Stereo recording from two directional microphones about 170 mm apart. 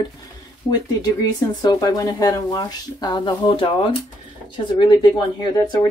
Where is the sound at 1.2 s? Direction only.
25° left (ahead or behind).